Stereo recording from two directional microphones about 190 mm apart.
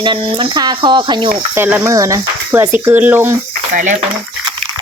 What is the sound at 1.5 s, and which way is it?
Speech, 10° right (ahead or behind).